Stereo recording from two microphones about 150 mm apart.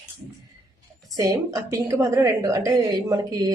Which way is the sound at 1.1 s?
20° right (ahead or behind).